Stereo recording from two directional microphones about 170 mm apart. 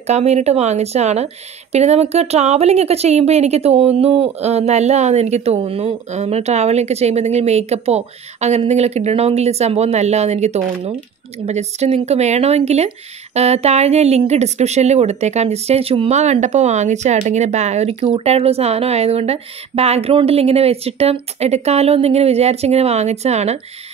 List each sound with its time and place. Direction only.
0.0 s speech: 40° right (ahead or behind)